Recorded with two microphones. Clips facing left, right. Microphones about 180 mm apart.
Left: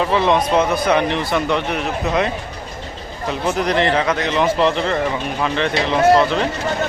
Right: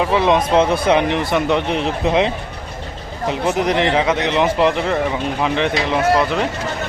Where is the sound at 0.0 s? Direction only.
10° right (ahead or behind).